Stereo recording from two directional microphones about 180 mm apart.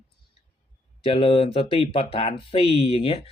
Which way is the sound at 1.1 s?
30° left (ahead or behind).